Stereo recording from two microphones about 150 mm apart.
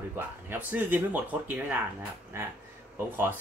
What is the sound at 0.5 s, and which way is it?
Speech, 10° right (ahead or behind).